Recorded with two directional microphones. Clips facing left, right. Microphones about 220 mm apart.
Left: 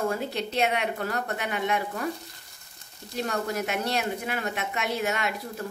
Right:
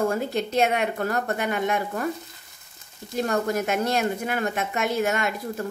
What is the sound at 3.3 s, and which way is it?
Speech, 50° right (ahead or behind).